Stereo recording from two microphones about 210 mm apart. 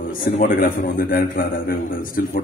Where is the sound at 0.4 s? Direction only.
45° left (ahead or behind).